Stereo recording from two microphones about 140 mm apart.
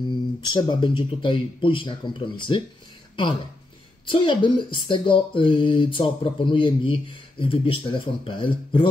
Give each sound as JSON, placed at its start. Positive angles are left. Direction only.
{"t": 0.4, "sound": "speech", "side_deg": 35}
{"t": 4.0, "sound": "speech", "side_deg": 35}